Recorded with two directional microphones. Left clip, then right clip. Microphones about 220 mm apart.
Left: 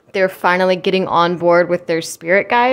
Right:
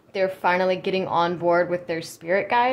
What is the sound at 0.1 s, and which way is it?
Speech, 35° left (ahead or behind).